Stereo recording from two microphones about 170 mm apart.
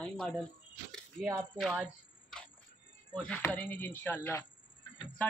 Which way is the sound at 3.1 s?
10° left (ahead or behind).